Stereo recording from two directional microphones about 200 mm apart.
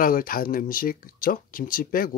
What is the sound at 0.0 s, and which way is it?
Speech, 45° left (ahead or behind).